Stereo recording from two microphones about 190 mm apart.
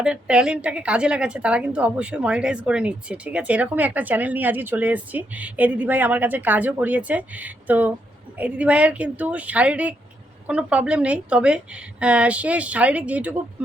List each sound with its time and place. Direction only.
0.0 s a woman's voice: 5° right (ahead or behind)